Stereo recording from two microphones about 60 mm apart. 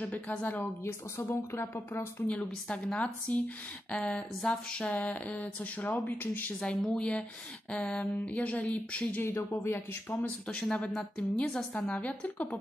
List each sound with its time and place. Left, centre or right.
0.0 s speech: left
1.6 s speech: left
2.7 s speech: left
6.6 s speech: centre
9.3 s speech: left
10.2 s speech: left